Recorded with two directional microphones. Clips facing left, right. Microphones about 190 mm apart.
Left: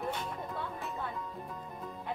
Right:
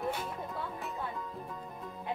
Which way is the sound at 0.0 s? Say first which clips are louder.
Right 1 dB; 5° right (ahead or behind).